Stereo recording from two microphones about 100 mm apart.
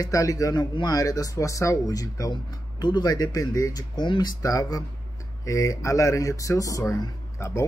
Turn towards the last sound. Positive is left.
turn(degrees=30)  # may be behind; listen again after turning